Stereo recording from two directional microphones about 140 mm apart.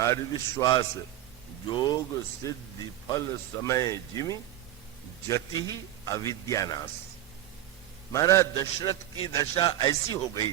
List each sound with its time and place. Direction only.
0.0 s a man's voice: 25° left (ahead or behind)
8.1 s a man's voice: 20° left (ahead or behind)